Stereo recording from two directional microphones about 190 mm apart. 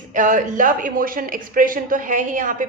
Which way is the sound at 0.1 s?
45° right (ahead or behind).